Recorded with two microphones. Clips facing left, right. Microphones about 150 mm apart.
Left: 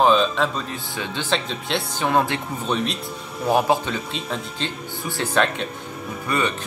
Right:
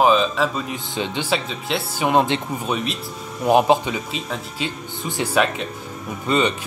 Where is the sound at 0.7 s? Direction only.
20° right (ahead or behind).